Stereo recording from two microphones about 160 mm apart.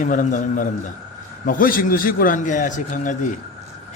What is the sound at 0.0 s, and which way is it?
A man's voice, 55° left (ahead or behind).